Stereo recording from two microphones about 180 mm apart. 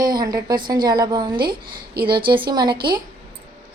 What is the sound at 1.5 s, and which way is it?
Speech, 60° right (ahead or behind).